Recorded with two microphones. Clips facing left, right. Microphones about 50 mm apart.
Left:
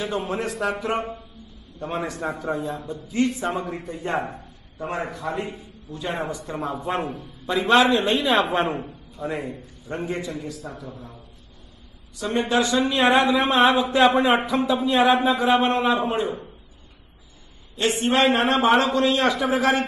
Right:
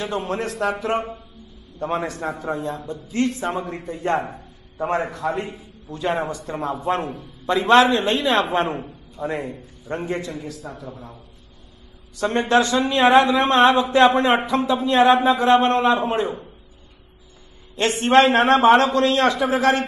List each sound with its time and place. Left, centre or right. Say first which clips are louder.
0.0 s a man's voice: right 1 dB; centre
17.7 s a man's voice: right 1 dB; right
18.8 s a man's voice: right 2 dB; centre